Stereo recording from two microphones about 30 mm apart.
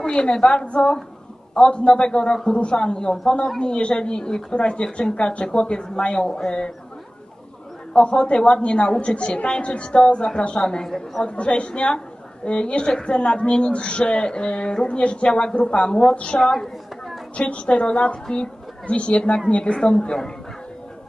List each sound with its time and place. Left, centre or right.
0.0 s speech: left
4.6 s speech: left
7.9 s speech: left
10.6 s speech: left
11.2 s speech: left
17.4 s a woman's voice: left
19.6 s speech: left